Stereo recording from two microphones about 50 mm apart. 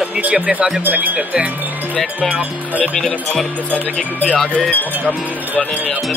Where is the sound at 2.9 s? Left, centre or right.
Centre.